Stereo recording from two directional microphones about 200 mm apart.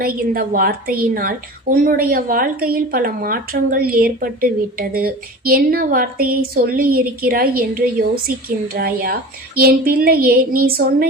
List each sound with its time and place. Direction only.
0.0 s speech: 45° right (ahead or behind)